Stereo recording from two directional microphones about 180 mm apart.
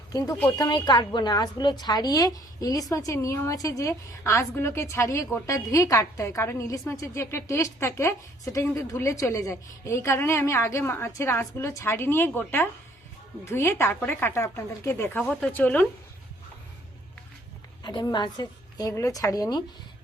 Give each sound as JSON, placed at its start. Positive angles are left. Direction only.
{"t": 0.1, "sound": "a woman's voice", "side_deg": 20}
{"t": 17.8, "sound": "a woman's voice", "side_deg": 25}